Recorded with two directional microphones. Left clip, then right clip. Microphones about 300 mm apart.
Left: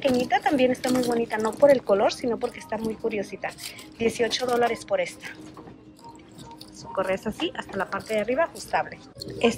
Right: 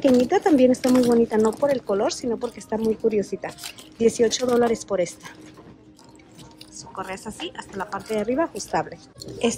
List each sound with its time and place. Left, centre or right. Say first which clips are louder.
0.0 s speech: right 4 dB; centre
7.0 s a woman's voice: left 6 dB; centre